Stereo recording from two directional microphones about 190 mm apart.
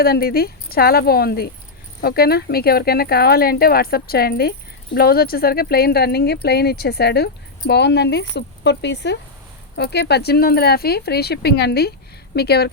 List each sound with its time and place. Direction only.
0.0 s speech: 50° left (ahead or behind)